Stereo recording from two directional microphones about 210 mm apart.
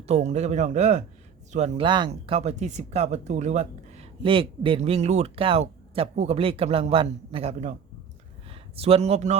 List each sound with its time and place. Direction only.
0.1 s a man's voice: 30° right (ahead or behind)